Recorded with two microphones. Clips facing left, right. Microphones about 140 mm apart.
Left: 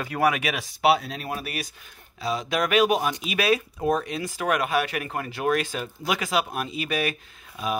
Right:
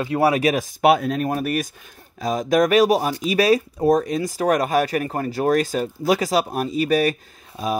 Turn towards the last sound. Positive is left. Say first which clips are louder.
# right 4 dB
turn(degrees=-35)  # may be behind; listen again after turning